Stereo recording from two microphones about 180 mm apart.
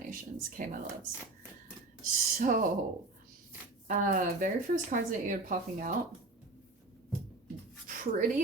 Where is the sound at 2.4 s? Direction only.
50° right (ahead or behind).